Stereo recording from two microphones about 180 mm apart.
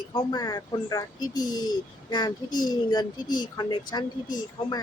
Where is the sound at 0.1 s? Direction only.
25° left (ahead or behind).